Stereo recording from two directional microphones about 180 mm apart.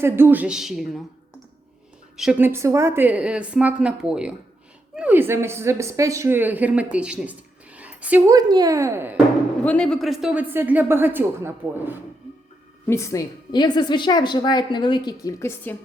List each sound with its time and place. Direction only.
0.0 s a woman's voice: 10° right (ahead or behind)
2.1 s a woman's voice: 5° right (ahead or behind)
6.9 s a sound: 5° right (ahead or behind)
8.4 s a woman's voice: 20° right (ahead or behind)
9.6 s a woman's voice: 5° left (ahead or behind); by 11.9 s 10° right (ahead or behind)
12.9 s a woman's voice: 15° left (ahead or behind)